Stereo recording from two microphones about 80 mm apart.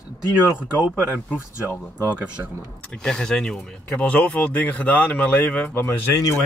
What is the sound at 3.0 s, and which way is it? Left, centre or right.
Speech, centre.